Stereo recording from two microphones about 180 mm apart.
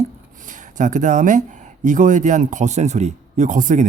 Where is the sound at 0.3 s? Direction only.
45° right (ahead or behind).